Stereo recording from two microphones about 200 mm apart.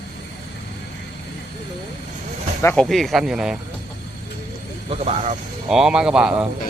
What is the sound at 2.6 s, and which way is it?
Speech, 10° left (ahead or behind).